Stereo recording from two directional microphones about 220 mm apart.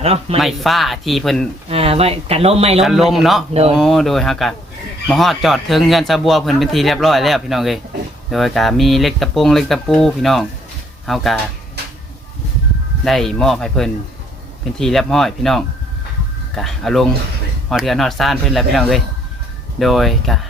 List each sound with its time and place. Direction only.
0.0 s speech: 25° right (ahead or behind)
0.3 s a man's voice: centre (ahead or behind)
1.7 s speech: 25° right (ahead or behind)
2.8 s a man's voice: centre (ahead or behind)
13.1 s a man's voice: centre (ahead or behind)